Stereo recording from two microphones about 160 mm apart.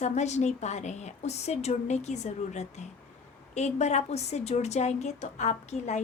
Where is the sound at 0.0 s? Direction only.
45° left (ahead or behind).